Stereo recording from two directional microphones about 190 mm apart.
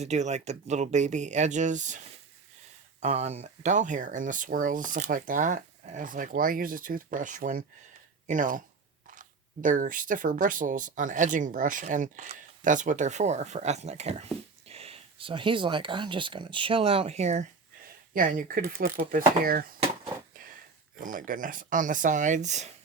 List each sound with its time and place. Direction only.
0.0 s speech: 35° right (ahead or behind)
3.0 s speech: 35° right (ahead or behind)
21.0 s speech: 45° right (ahead or behind)